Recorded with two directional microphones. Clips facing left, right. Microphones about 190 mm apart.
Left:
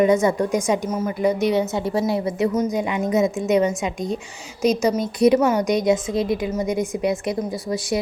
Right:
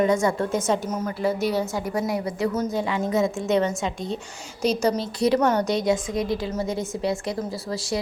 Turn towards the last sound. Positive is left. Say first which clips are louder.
# left 4 dB
turn(degrees=20)  # may be behind; listen again after turning